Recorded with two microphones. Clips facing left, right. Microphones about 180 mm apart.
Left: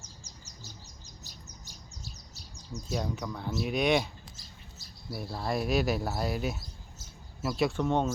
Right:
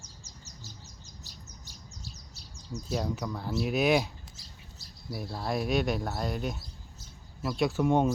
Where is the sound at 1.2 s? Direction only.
45° left (ahead or behind).